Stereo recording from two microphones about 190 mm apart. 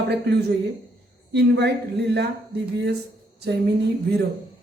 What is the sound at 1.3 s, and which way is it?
Speech, 60° right (ahead or behind).